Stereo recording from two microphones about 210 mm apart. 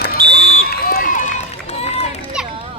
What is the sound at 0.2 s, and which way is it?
Run, 50° right (ahead or behind).